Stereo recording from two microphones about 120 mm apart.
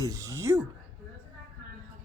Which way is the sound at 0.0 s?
30° right (ahead or behind).